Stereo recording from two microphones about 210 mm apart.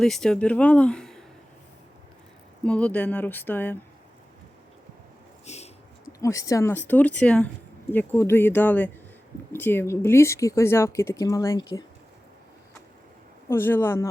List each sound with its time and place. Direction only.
0.0 s speech: 5° left (ahead or behind)
2.6 s speech: 5° left (ahead or behind)
5.5 s a sound: 30° left (ahead or behind)
6.1 s speech: 15° left (ahead or behind)
13.5 s speech: 10° left (ahead or behind)